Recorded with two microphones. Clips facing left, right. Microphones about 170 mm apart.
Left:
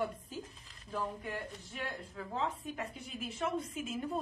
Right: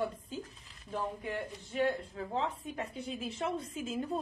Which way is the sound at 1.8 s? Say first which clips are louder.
Right 10 dB; 30° right (ahead or behind).